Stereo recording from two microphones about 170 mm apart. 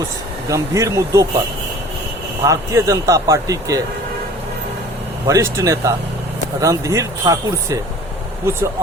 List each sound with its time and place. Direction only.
0.4 s speech: 20° right (ahead or behind)
2.4 s speech: 20° right (ahead or behind)
5.3 s speech: 15° right (ahead or behind)